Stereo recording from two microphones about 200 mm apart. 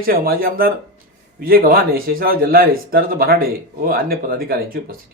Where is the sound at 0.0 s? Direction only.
45° right (ahead or behind).